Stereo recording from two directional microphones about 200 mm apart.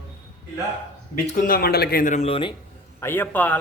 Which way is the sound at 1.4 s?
50° left (ahead or behind).